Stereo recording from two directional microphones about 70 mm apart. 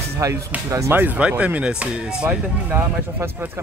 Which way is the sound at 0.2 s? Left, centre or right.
Right.